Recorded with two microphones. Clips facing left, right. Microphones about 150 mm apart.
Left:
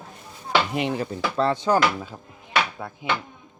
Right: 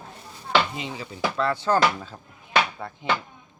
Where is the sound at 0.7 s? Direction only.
60° left (ahead or behind).